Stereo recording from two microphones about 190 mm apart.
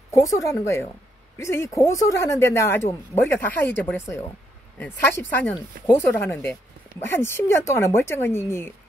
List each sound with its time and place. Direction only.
0.1 s speech: 15° left (ahead or behind)